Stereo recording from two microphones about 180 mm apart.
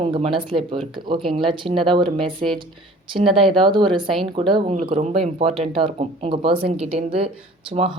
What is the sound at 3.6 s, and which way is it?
Speech, 25° right (ahead or behind).